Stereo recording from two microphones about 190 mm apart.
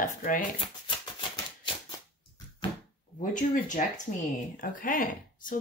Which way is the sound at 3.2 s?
45° left (ahead or behind).